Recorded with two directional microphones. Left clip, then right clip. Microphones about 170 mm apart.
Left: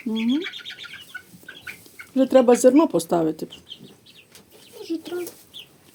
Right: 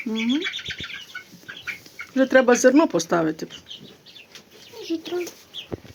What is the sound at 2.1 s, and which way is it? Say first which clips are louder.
Speech: left 1 dB; 20° left (ahead or behind).